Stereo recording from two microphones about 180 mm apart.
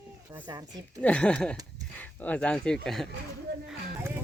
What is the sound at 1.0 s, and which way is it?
Speech, 5° left (ahead or behind).